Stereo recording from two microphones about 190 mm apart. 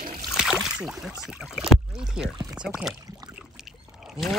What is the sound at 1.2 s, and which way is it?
Speech, 5° right (ahead or behind).